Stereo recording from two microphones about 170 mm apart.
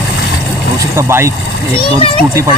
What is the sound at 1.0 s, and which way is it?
Speech, 15° right (ahead or behind).